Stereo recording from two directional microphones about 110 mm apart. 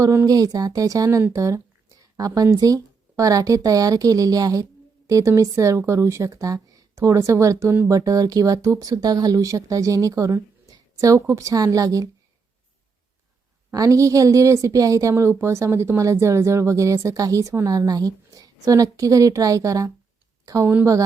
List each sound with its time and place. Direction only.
0.0 s a woman's voice: 30° right (ahead or behind)
13.7 s a woman's voice: 30° right (ahead or behind)